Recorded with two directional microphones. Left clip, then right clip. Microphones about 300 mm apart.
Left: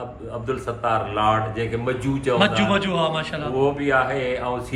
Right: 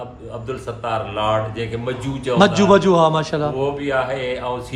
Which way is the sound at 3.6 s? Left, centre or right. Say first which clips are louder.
Left 5 dB; centre.